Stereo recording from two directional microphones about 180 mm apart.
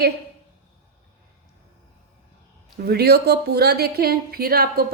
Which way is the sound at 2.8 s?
60° right (ahead or behind).